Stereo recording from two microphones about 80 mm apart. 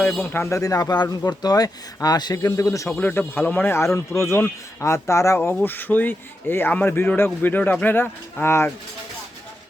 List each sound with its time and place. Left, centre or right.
0.0 s speech: centre
0.3 s speech: left
0.6 s speech: left
2.9 s speech: centre; by 5.4 s left
5.6 s speech: left